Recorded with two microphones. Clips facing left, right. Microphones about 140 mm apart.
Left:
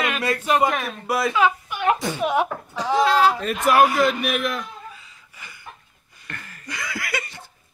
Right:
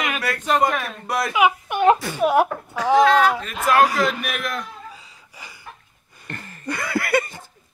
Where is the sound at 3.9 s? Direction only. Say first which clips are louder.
Left 2 dB; centre (ahead or behind).